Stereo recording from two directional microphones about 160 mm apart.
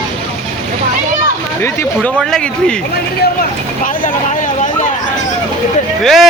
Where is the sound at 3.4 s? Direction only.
60° left (ahead or behind).